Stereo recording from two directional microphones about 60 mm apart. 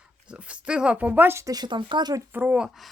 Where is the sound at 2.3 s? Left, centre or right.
Right.